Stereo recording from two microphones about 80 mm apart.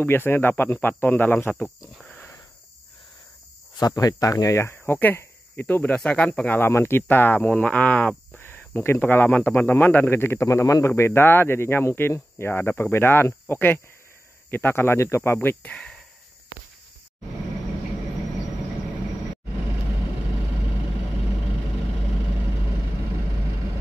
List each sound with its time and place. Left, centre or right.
0.0 s speech: left
2.0 s a sound: centre
3.7 s speech: left
4.8 s speech: left
6.7 s speech: left
7.4 s speech: centre
15.7 s a sound: centre